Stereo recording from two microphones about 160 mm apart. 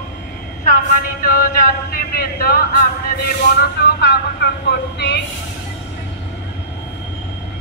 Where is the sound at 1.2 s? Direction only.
65° left (ahead or behind).